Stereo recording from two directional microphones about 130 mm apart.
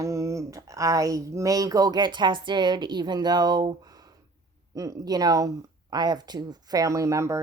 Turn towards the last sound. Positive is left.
turn(degrees=-25)  # may be behind; listen again after turning